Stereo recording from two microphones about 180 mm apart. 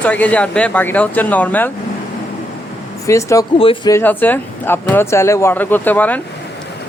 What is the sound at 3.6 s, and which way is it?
Speech, 30° left (ahead or behind).